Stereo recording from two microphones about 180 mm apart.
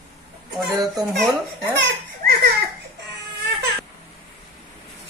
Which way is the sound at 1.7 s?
70° right (ahead or behind).